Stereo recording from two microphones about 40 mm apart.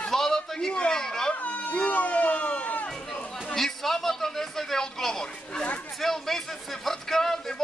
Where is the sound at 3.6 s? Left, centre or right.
Centre.